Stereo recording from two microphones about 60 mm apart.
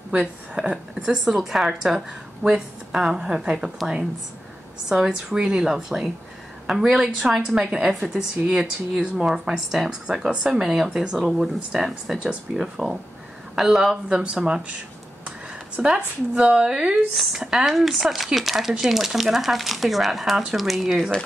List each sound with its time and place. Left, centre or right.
0.6 s a woman's voice: centre